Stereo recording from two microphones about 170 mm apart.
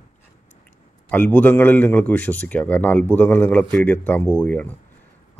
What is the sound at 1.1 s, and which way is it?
Speech, 10° left (ahead or behind).